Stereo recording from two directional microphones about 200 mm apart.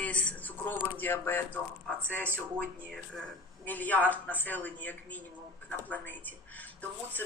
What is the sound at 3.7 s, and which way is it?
A woman's voice, 10° left (ahead or behind).